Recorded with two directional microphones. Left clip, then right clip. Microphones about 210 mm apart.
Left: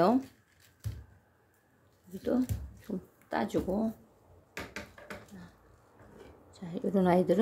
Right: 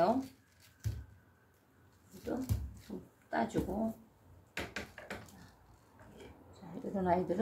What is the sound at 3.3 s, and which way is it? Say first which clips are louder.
Speech: left 3 dB; 50° left (ahead or behind).